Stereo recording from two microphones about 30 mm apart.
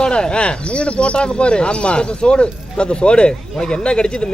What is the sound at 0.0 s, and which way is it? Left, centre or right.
Speech, left.